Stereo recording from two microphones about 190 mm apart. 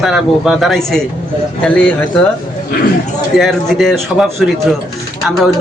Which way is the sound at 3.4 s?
Centre (ahead or behind).